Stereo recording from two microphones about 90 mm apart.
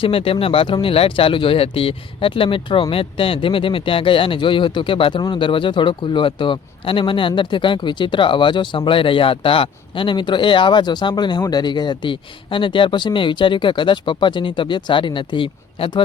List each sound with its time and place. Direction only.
0.0 s speech: 90° left
2.9 s speech: 90° left; by 16.0 s 70° left (ahead or behind)